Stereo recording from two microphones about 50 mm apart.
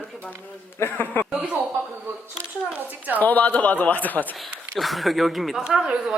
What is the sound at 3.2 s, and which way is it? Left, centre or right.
Speech, left.